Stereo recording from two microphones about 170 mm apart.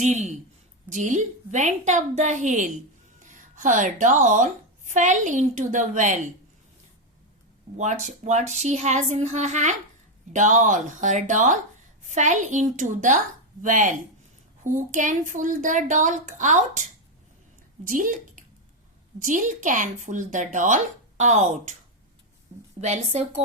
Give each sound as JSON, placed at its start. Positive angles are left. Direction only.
{"t": 0.0, "sound": "speech", "side_deg": -45}
{"t": 7.8, "sound": "speech", "side_deg": -45}
{"t": 17.8, "sound": "speech", "side_deg": -50}
{"t": 22.8, "sound": "a woman's voice", "side_deg": -40}